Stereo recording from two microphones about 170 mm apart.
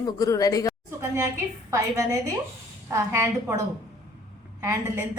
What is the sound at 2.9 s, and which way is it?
Speech, 15° right (ahead or behind).